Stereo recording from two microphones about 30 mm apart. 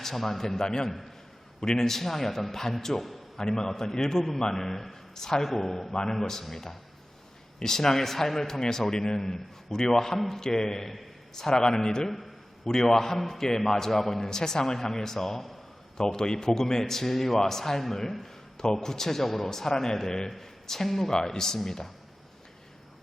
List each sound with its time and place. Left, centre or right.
0.0 s a man's voice: centre
3.3 s a man's voice: centre
5.9 s a man's voice: left
12.0 s a man's voice: centre
16.0 s a man's voice: left
18.6 s a man's voice: left
19.5 s a man's voice: centre
21.2 s a man's voice: centre